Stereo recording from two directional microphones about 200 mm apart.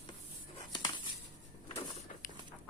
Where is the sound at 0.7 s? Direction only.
20° left (ahead or behind).